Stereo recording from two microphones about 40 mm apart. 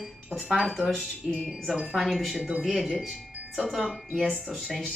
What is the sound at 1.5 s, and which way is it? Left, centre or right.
Speech, centre.